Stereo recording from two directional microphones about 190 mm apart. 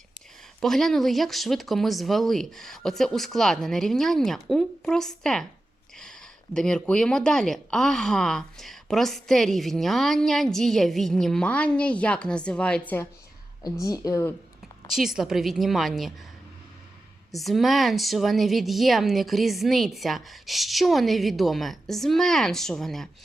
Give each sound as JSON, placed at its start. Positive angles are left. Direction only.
{"t": 0.6, "sound": "speech", "side_deg": 0}
{"t": 14.8, "sound": "speech", "side_deg": 0}
{"t": 17.3, "sound": "speech", "side_deg": 0}